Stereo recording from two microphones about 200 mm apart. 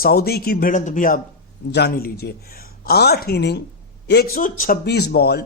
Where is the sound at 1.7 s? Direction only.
55° left (ahead or behind).